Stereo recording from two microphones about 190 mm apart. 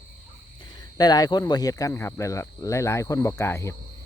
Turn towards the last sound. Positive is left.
turn(degrees=15)  # may be behind; listen again after turning